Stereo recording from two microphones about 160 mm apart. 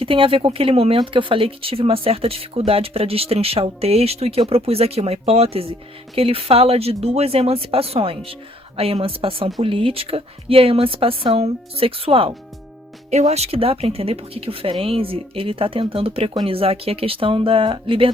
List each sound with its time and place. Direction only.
0.0 s speech: 35° right (ahead or behind)